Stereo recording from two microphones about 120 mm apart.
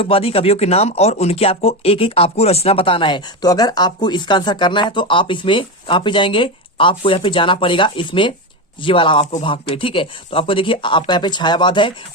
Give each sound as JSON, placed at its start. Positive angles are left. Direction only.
{"t": 0.0, "sound": "speech", "side_deg": 50}